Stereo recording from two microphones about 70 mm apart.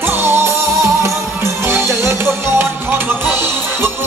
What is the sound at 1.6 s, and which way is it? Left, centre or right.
Music, right.